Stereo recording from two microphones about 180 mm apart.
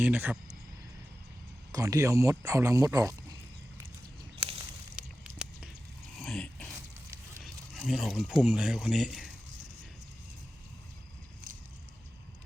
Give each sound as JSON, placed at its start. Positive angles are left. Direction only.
{"t": 0.0, "sound": "speech", "side_deg": -10}
{"t": 1.7, "sound": "speech", "side_deg": -15}
{"t": 4.9, "sound": "a sound", "side_deg": -5}
{"t": 7.4, "sound": "speech", "side_deg": 0}